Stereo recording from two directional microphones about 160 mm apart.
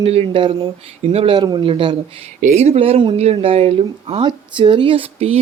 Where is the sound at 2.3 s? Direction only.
45° right (ahead or behind).